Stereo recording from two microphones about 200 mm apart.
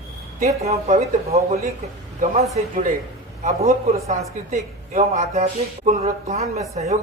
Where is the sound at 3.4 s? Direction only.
35° right (ahead or behind).